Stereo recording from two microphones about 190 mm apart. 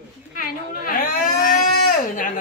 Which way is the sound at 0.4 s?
50° left (ahead or behind).